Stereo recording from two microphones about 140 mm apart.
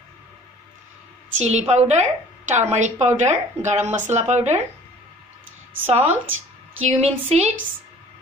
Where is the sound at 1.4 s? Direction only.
55° right (ahead or behind).